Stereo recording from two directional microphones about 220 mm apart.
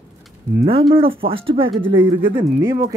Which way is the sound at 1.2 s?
25° right (ahead or behind).